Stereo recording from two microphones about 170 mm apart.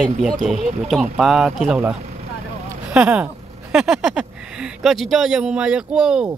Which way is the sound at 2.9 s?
5° right (ahead or behind).